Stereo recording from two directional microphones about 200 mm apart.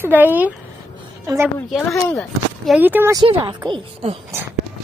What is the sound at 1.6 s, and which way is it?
Speech, 5° left (ahead or behind).